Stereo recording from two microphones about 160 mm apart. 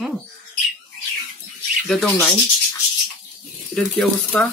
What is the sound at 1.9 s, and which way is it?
Speech, centre (ahead or behind).